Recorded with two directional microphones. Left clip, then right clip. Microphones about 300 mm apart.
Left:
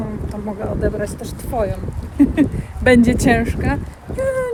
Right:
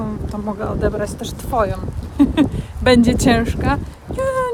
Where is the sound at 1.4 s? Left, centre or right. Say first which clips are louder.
Right 3 dB; centre.